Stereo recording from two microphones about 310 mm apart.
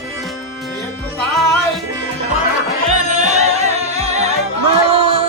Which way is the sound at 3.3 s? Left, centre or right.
Right.